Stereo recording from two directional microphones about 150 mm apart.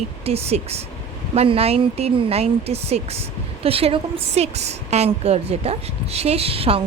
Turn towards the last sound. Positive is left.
turn(degrees=-40)  # may be behind; listen again after turning